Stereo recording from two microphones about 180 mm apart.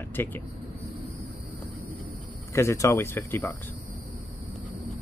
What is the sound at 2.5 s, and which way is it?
Speech, 15° left (ahead or behind).